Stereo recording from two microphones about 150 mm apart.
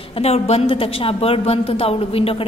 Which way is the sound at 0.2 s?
45° left (ahead or behind).